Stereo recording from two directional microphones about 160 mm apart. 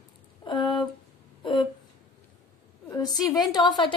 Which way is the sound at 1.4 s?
30° left (ahead or behind).